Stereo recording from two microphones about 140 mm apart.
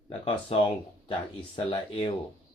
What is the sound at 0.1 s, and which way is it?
Speech, 40° left (ahead or behind).